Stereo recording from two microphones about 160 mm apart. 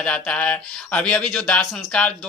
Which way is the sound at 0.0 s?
5° left (ahead or behind).